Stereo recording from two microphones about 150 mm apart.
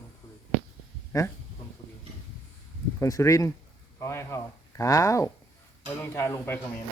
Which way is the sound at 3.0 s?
20° left (ahead or behind).